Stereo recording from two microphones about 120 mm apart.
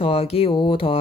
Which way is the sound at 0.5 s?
45° left (ahead or behind).